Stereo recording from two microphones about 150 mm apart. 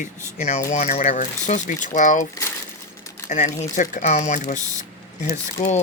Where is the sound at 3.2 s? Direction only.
55° left (ahead or behind).